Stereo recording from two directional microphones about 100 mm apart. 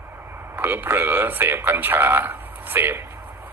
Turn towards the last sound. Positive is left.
turn(degrees=-20)  # may be behind; listen again after turning